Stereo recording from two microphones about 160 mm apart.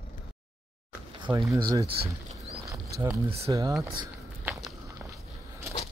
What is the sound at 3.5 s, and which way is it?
Speech, 20° right (ahead or behind).